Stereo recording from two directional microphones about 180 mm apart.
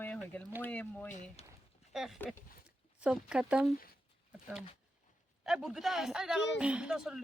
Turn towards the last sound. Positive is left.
turn(degrees=-5)  # may be behind; listen again after turning